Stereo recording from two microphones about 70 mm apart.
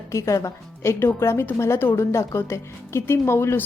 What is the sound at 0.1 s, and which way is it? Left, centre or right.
A woman's voice, left.